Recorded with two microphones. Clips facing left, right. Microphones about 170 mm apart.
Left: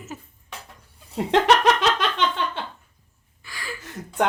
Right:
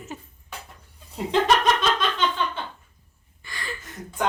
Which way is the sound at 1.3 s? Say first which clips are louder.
Left 2 dB; 75° left (ahead or behind).